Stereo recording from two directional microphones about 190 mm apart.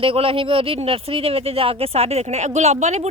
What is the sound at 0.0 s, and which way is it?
Speech, 30° right (ahead or behind).